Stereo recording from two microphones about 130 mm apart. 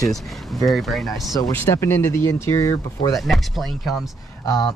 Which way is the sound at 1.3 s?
25° left (ahead or behind).